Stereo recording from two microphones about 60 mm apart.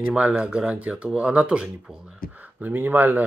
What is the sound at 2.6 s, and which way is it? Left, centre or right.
Speech, right.